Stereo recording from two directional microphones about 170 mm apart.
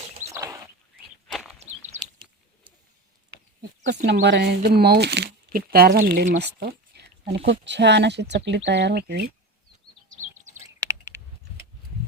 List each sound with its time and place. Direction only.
0.3 s bird: 15° right (ahead or behind)
1.3 s walk: centre (ahead or behind)
4.0 s speech: 80° right; by 6.4 s 55° right (ahead or behind)
6.4 s speech: 75° right (ahead or behind)
7.3 s speech: 90° right; by 9.2 s 70° right (ahead or behind)
10.1 s a sound: 45° right (ahead or behind)
10.8 s a sound: 20° right (ahead or behind)